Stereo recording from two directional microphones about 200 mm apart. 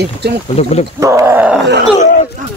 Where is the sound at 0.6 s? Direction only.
30° left (ahead or behind).